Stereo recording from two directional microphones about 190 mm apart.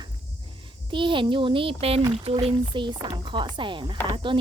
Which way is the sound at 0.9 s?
25° right (ahead or behind).